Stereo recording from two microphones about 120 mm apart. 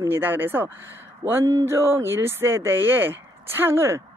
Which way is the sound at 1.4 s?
25° right (ahead or behind).